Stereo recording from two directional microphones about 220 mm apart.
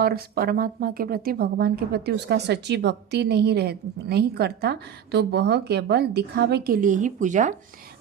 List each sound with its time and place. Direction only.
0.0 s speech: 45° right (ahead or behind)